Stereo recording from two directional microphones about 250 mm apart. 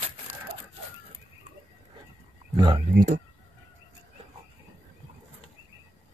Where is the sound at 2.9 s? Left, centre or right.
Right.